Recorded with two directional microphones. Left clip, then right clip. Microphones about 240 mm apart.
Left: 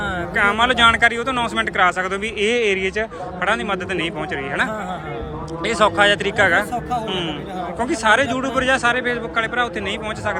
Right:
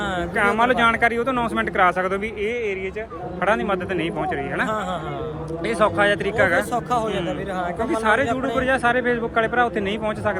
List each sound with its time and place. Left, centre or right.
0.0 s speech: centre
2.4 s speech: centre
3.4 s speech: centre
7.8 s speech: centre